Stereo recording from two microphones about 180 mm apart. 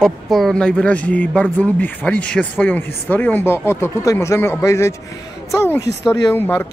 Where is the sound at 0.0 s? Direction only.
Centre (ahead or behind).